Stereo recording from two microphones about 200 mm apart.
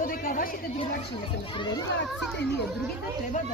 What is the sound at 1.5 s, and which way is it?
Speech, 20° left (ahead or behind).